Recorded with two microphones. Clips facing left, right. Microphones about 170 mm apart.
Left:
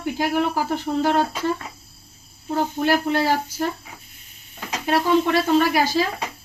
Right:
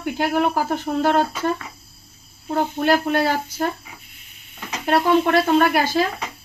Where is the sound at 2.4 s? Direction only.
55° right (ahead or behind).